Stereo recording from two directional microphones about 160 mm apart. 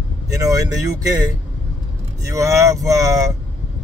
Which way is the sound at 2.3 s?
20° right (ahead or behind).